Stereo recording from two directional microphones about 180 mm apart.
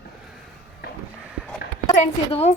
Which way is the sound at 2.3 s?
35° left (ahead or behind).